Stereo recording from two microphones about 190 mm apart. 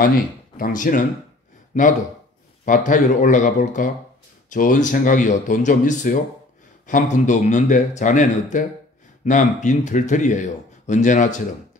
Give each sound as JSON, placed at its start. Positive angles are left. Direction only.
{"t": 0.0, "sound": "a man's voice", "side_deg": 50}